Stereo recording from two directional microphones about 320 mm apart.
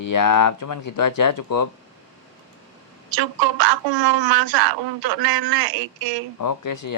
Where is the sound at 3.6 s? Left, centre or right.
Right.